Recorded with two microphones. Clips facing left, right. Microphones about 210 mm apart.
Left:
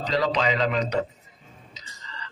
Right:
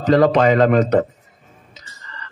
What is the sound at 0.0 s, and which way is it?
Speech, 50° right (ahead or behind).